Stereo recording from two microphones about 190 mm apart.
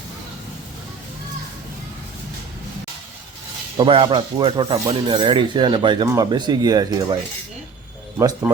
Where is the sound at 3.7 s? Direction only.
30° right (ahead or behind).